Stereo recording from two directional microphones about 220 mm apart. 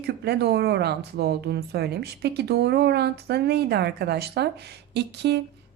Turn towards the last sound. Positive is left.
turn(degrees=-50)  # may be behind; listen again after turning